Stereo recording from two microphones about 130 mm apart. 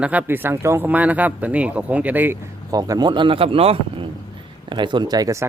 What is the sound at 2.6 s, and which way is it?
A man's voice, 25° right (ahead or behind).